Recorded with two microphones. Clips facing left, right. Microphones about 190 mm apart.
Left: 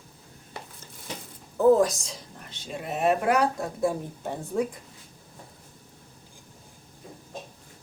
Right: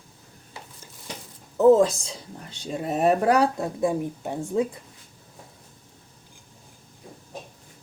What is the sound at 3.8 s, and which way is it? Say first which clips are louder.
Speech: right 2 dB; 20° right (ahead or behind).